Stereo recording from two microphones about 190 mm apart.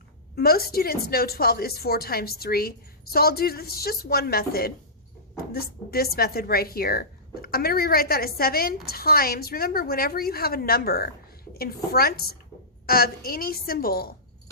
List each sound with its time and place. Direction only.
0.3 s speech: 55° left (ahead or behind)